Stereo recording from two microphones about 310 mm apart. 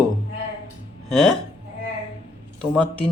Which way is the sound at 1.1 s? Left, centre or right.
Centre.